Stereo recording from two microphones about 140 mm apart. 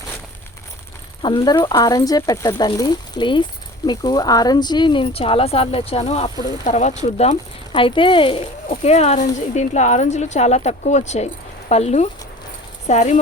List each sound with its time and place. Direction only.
1.2 s speech: 35° left (ahead or behind); by 7.3 s 50° left (ahead or behind)
7.7 s speech: 35° left (ahead or behind)
8.7 s speech: 50° left (ahead or behind)